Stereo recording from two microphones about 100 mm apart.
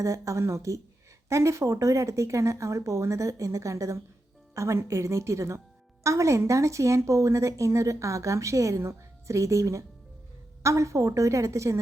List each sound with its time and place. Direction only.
0.0 s a woman's voice: 30° right (ahead or behind)